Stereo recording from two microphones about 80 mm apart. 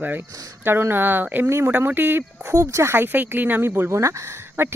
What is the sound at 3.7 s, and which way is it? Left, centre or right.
Speech, right.